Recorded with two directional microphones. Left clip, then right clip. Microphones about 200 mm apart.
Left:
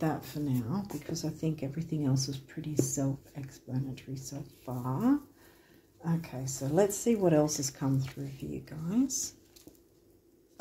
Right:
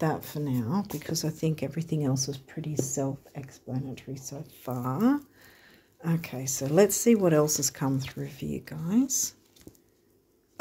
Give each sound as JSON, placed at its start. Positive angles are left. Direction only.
{"t": 0.0, "sound": "speech", "side_deg": -45}
{"t": 4.7, "sound": "speech", "side_deg": -50}